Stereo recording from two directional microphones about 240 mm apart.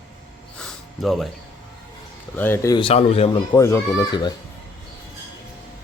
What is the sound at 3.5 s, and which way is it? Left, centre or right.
Speech, centre.